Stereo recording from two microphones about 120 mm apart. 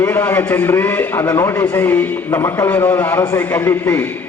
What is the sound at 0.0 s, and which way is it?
A man's voice, 20° left (ahead or behind).